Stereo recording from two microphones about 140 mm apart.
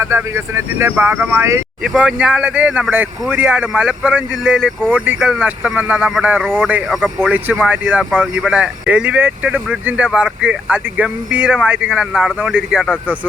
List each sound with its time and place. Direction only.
0.0 s speech: 20° right (ahead or behind)
1.8 s speech: 5° right (ahead or behind)